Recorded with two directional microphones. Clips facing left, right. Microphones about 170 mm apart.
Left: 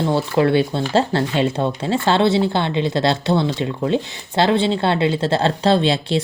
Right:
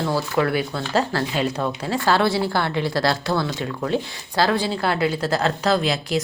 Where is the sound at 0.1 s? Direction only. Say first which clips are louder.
Left 6 dB; 25° left (ahead or behind).